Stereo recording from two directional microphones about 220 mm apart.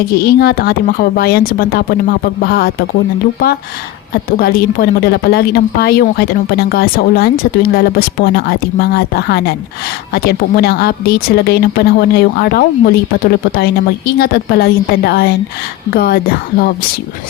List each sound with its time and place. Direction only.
0.2 s a woman's voice: 45° left (ahead or behind)
4.1 s a woman's voice: 45° left (ahead or behind)
14.2 s a woman's voice: 45° left (ahead or behind)